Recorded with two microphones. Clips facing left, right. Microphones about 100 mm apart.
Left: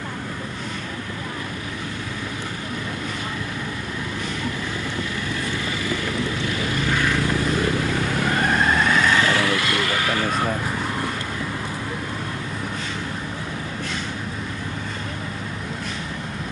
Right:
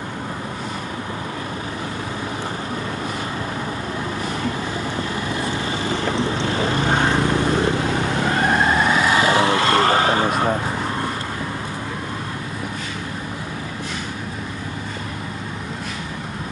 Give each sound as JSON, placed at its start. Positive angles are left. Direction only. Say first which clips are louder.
{"t": 5.3, "sound": "vehicle", "louder": "right 3 dB", "side_deg": -25}